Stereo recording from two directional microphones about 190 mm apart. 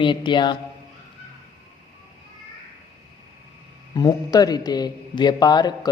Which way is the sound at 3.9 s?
20° left (ahead or behind).